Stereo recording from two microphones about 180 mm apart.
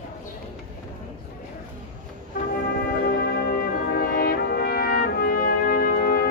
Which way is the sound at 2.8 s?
60° left (ahead or behind).